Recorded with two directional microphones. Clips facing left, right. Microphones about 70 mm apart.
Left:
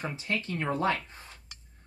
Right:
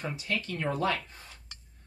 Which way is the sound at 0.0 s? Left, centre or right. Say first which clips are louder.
Left 1 dB; left.